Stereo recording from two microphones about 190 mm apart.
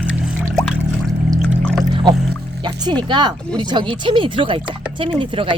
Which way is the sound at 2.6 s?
20° right (ahead or behind).